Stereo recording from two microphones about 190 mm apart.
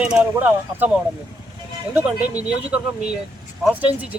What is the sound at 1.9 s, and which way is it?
Speech, 5° right (ahead or behind).